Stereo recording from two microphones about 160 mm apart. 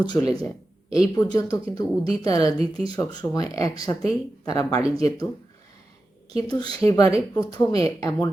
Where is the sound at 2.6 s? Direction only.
35° right (ahead or behind).